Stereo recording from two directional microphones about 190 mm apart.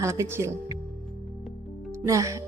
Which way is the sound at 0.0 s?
15° right (ahead or behind).